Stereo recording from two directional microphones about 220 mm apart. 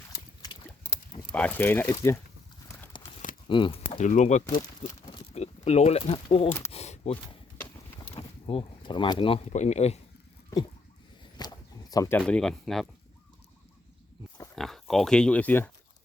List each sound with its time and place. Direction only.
1.3 s speech: 5° left (ahead or behind)
2.6 s clip-clop: 15° left (ahead or behind)
3.5 s speech: 20° left (ahead or behind)
3.9 s speech: 35° left (ahead or behind)
4.8 s a sound: 30° left (ahead or behind)
8.0 s speech: 25° left (ahead or behind)
11.3 s a sound: 15° left (ahead or behind); by 12.9 s centre (ahead or behind)
14.5 s speech: centre (ahead or behind)